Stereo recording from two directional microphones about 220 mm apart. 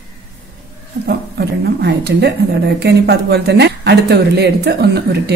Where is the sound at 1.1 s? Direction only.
50° right (ahead or behind).